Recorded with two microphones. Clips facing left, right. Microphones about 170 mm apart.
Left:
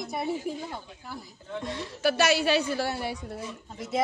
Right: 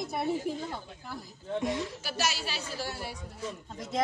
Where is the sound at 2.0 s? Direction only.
65° left (ahead or behind).